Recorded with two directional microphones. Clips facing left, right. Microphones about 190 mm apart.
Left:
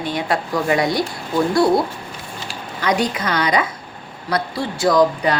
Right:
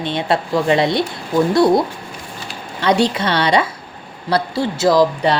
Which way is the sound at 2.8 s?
30° right (ahead or behind).